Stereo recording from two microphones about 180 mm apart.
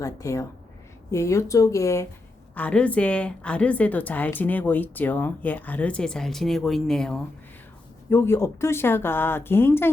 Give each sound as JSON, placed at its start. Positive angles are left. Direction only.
{"t": 0.0, "sound": "a woman's voice", "side_deg": 15}
{"t": 8.1, "sound": "a woman's voice", "side_deg": 15}